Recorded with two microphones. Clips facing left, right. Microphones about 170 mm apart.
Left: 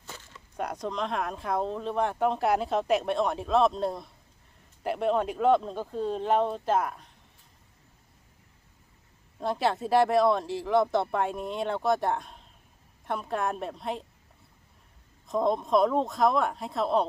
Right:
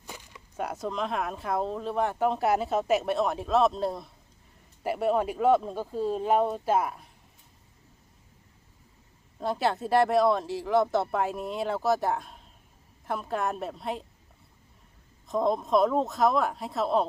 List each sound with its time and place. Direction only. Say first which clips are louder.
0.0 s a sound: right 1 dB; 15° right (ahead or behind)
0.5 s speech: even; 5° right (ahead or behind)
9.4 s speech: even; centre (ahead or behind)
15.3 s speech: even; centre (ahead or behind)